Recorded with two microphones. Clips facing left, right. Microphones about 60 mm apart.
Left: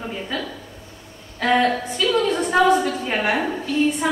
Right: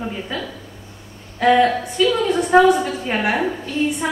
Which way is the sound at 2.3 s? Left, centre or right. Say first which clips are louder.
Right 5 dB; centre.